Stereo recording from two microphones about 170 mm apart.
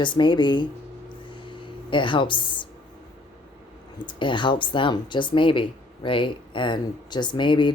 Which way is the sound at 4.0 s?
30° left (ahead or behind).